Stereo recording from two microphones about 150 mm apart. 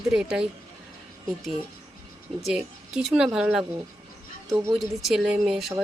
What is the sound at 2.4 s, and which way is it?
Speech, 5° right (ahead or behind).